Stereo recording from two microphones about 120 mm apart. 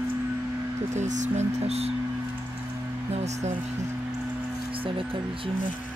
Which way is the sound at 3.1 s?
70° right (ahead or behind).